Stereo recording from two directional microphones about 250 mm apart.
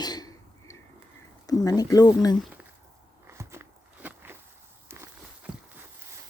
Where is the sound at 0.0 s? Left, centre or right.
Centre.